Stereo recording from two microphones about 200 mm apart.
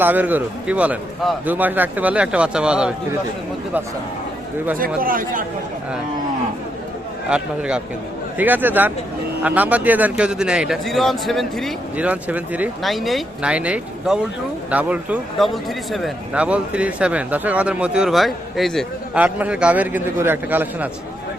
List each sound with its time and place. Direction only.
0.0 s speech: 10° right (ahead or behind)
4.9 s speech: 45° right (ahead or behind)
7.3 s a man's voice: 5° right (ahead or behind)